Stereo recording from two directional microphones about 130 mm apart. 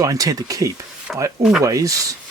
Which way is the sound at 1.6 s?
25° right (ahead or behind).